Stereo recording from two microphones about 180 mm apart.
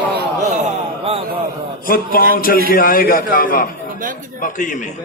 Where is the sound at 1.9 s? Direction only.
55° left (ahead or behind).